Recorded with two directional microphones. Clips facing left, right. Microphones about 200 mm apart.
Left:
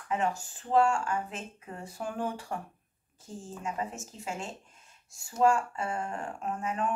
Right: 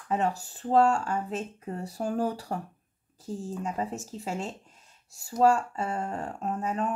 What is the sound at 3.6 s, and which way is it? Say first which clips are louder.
Speech: left 1 dB; 35° right (ahead or behind).